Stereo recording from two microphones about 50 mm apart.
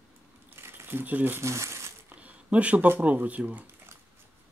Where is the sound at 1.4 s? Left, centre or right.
Right.